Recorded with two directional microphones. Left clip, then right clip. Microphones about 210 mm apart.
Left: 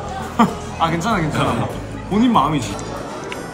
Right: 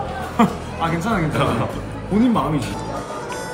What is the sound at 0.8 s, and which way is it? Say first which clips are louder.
Speech: left 3 dB; 15° left (ahead or behind).